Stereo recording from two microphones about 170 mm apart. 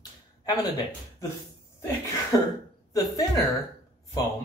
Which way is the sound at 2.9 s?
20° left (ahead or behind).